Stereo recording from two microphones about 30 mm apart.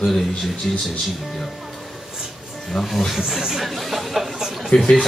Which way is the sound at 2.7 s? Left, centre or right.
Centre.